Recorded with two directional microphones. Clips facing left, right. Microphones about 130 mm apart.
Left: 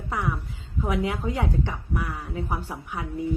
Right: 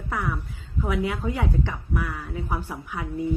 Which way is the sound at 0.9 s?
25° left (ahead or behind).